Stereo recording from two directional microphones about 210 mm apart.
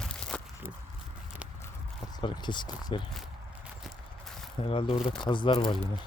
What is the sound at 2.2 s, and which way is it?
Speech, 20° left (ahead or behind).